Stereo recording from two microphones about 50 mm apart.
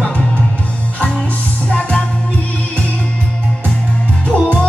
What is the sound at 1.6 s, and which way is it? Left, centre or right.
Music, left.